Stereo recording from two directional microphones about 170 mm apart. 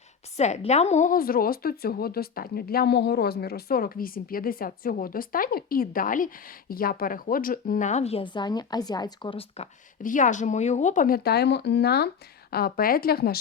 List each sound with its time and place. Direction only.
0.3 s a woman's voice: 40° left (ahead or behind)
10.0 s a woman's voice: 50° left (ahead or behind); by 13.4 s 65° left (ahead or behind)